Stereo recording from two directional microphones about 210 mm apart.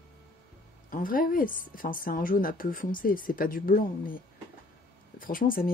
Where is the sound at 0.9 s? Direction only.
40° left (ahead or behind).